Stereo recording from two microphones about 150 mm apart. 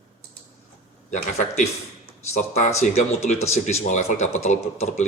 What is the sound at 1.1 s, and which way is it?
Speech, 50° left (ahead or behind).